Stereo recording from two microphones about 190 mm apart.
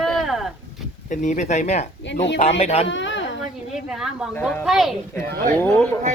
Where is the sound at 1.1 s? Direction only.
40° left (ahead or behind).